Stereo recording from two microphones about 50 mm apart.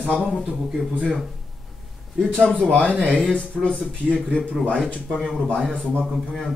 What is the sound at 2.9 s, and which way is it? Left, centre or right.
Speech, left.